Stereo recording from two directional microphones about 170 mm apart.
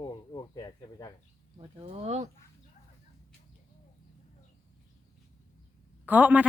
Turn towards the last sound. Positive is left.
turn(degrees=-10)  # may be behind; listen again after turning